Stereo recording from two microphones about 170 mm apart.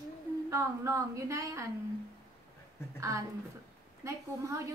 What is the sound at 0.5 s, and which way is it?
A woman's voice, 20° right (ahead or behind).